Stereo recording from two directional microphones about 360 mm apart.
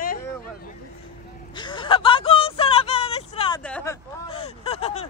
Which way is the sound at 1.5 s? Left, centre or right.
Centre.